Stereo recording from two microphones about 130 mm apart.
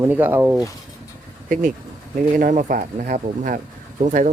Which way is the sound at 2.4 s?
75° right (ahead or behind).